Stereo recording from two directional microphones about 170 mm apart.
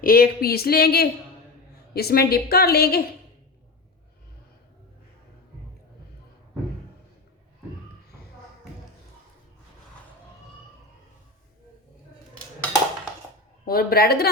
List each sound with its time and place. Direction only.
0.0 s speech: 60° left (ahead or behind)
13.7 s speech: 60° left (ahead or behind)